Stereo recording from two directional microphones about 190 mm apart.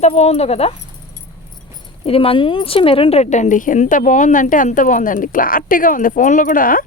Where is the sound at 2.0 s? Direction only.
30° left (ahead or behind); by 6.8 s 45° left (ahead or behind).